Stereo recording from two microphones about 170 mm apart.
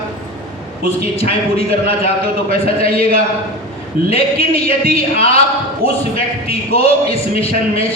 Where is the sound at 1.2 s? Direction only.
35° left (ahead or behind).